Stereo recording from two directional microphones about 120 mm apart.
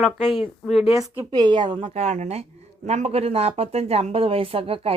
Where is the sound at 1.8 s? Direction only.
75° right (ahead or behind).